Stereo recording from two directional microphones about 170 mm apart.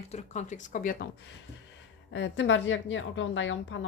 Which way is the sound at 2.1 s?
90° left.